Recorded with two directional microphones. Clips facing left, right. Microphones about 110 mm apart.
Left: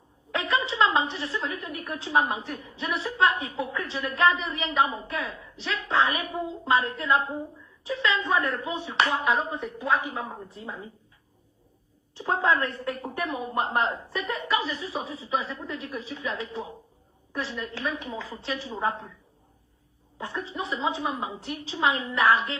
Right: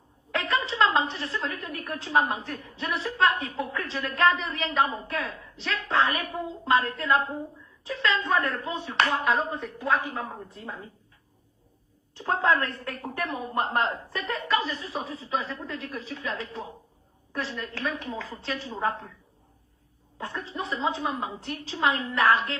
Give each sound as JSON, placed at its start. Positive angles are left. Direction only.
{"t": 0.3, "sound": "a woman's voice", "side_deg": 10}
{"t": 12.1, "sound": "a woman's voice", "side_deg": 10}
{"t": 20.1, "sound": "a woman's voice", "side_deg": 10}